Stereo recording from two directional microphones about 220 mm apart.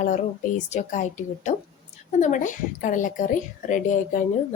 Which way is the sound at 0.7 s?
35° left (ahead or behind).